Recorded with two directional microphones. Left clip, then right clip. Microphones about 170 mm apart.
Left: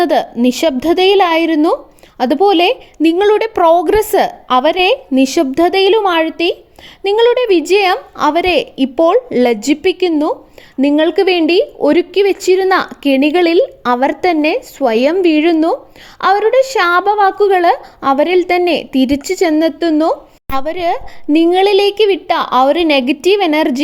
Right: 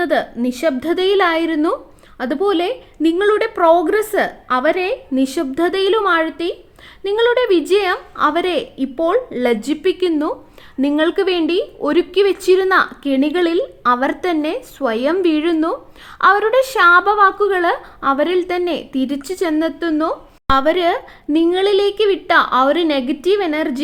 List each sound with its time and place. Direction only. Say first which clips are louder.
0.0 s speech: left 5 dB; 40° left (ahead or behind)